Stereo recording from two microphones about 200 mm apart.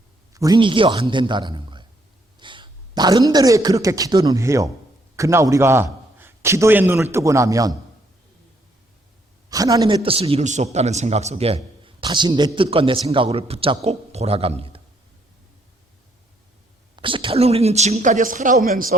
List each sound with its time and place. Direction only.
0.3 s a man's voice: 20° right (ahead or behind)
9.5 s a man's voice: 15° right (ahead or behind)
16.9 s speech: 25° right (ahead or behind); by 18.9 s 45° right (ahead or behind)